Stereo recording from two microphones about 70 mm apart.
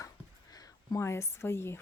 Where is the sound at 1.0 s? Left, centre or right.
Left.